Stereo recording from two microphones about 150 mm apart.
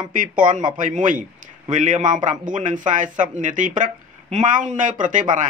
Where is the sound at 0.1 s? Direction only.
65° right (ahead or behind).